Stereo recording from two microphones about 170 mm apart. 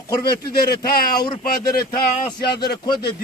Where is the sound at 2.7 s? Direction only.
25° left (ahead or behind).